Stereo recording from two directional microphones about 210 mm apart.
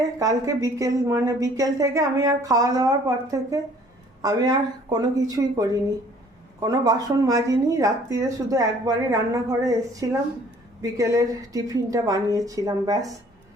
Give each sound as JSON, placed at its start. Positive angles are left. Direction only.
{"t": 0.2, "sound": "a woman's voice", "side_deg": -15}